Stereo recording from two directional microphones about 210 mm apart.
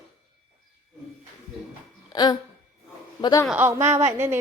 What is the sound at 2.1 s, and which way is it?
Speech, 20° left (ahead or behind).